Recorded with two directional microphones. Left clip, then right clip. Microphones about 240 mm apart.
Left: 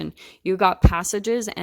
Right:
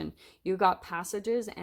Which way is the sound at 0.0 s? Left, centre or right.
Left.